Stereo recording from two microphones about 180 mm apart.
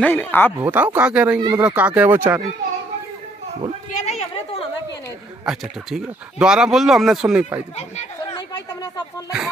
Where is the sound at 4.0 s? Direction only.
40° left (ahead or behind).